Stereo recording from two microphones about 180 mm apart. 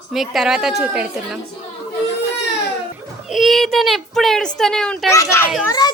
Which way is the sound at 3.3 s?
Centre (ahead or behind).